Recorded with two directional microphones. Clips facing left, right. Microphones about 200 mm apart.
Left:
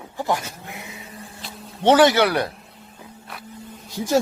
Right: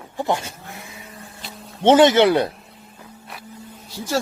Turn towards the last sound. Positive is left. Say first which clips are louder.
# left 4 dB
turn(degrees=15)  # may be behind; listen again after turning